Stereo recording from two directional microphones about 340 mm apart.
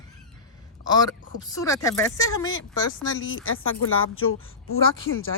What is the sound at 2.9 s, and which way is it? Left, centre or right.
A woman's voice, left.